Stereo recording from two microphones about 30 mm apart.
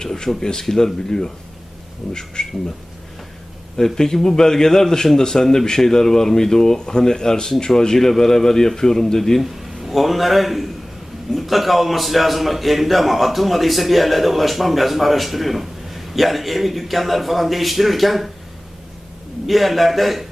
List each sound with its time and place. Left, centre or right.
0.0 s a man's voice: left
3.8 s a man's voice: centre
7.9 s speech: centre
9.4 s a man's voice: centre
19.5 s a man's voice: centre